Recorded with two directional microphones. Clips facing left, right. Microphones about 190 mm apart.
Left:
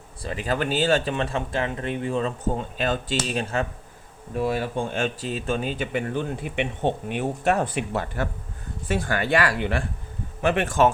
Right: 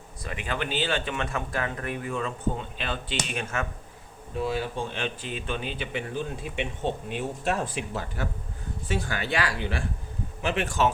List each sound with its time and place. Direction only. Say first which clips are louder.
0.2 s speech: left 6 dB; 30° left (ahead or behind)
3.2 s speech: left 6 dB; 35° left (ahead or behind)
4.4 s speech: left 4 dB; 55° left (ahead or behind)